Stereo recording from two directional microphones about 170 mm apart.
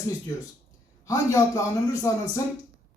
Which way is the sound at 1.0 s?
20° left (ahead or behind).